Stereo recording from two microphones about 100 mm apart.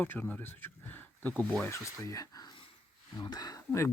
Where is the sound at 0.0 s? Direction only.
15° left (ahead or behind).